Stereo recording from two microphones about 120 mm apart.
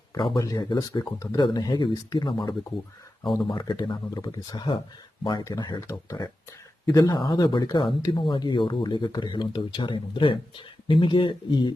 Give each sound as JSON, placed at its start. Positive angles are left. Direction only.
{"t": 0.2, "sound": "speech", "side_deg": 35}
{"t": 6.9, "sound": "speech", "side_deg": 25}